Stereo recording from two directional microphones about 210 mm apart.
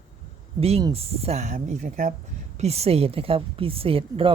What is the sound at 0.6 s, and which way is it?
Speech, 25° right (ahead or behind).